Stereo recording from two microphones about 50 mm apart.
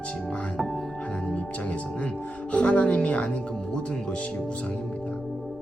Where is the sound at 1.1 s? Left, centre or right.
Centre.